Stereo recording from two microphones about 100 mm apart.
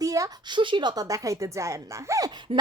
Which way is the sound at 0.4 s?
50° right (ahead or behind).